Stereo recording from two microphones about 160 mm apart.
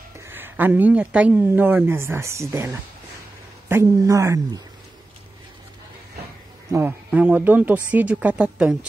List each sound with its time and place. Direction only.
0.3 s speech: 10° right (ahead or behind)
6.7 s speech: 15° right (ahead or behind)